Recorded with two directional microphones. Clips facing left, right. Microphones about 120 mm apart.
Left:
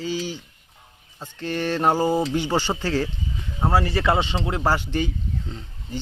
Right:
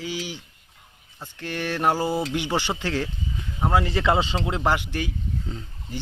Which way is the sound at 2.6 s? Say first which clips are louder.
Left 3 dB; 15° right (ahead or behind).